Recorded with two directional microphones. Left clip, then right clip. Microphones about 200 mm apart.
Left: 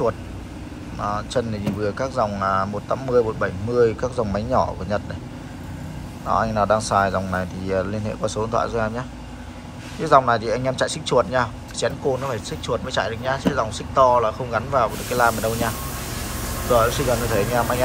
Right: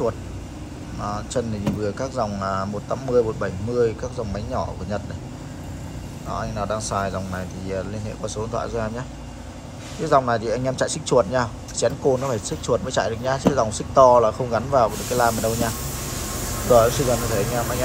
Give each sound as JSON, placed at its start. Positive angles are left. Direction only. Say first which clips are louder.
{"t": 1.0, "sound": "speech", "louder": "left 3 dB", "side_deg": -10}
{"t": 6.2, "sound": "speech", "louder": "left 8 dB", "side_deg": 0}
{"t": 10.0, "sound": "speech", "louder": "left 3 dB", "side_deg": -10}
{"t": 16.7, "sound": "speech", "louder": "right 2 dB", "side_deg": -15}
{"t": 17.4, "sound": "speech", "louder": "left 3 dB", "side_deg": 0}